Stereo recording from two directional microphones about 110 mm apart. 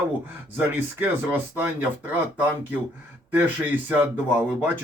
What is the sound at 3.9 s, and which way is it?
Speech, 15° right (ahead or behind).